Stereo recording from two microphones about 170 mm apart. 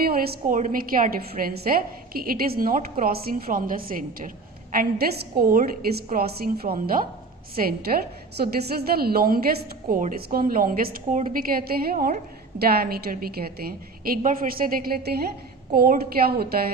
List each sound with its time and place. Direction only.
0.0 s a woman's voice: 60° right (ahead or behind)